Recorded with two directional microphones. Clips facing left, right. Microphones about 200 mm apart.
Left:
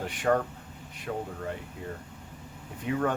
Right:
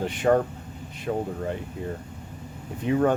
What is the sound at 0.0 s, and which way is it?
Speech, 25° right (ahead or behind).